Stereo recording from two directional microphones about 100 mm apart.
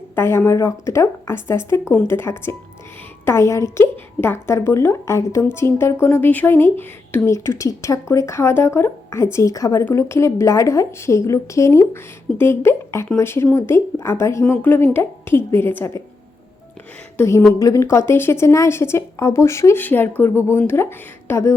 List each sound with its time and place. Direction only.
0.2 s speech: 25° left (ahead or behind)
17.6 s speech: 30° left (ahead or behind)
21.2 s a sound: 30° left (ahead or behind)